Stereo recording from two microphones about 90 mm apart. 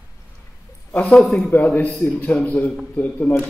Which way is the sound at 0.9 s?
10° left (ahead or behind).